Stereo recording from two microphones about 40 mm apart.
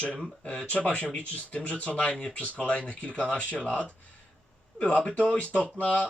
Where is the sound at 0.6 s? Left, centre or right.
Left.